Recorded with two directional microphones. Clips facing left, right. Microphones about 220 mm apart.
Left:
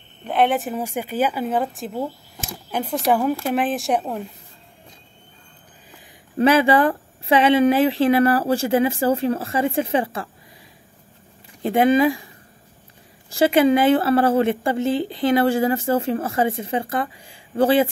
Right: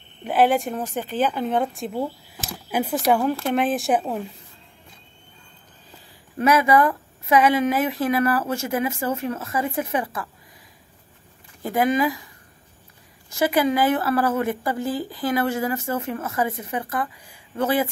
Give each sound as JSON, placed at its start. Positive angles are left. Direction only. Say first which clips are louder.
{"t": 0.2, "sound": "speech", "louder": "right 1 dB", "side_deg": -5}
{"t": 6.3, "sound": "a woman's voice", "louder": "left 2 dB", "side_deg": 30}
{"t": 11.6, "sound": "a woman's voice", "louder": "left 5 dB", "side_deg": 25}
{"t": 13.3, "sound": "a woman's voice", "louder": "left 5 dB", "side_deg": 25}